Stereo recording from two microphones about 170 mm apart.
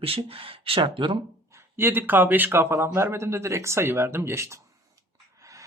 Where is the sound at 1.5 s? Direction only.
15° right (ahead or behind).